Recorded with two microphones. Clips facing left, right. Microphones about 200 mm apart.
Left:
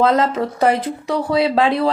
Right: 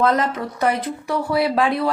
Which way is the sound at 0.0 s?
25° left (ahead or behind).